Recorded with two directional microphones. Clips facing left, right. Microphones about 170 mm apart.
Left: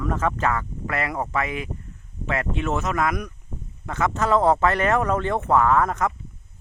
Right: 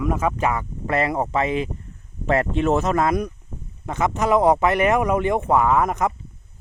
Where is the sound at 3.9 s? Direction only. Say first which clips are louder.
Right 2 dB; 20° right (ahead or behind).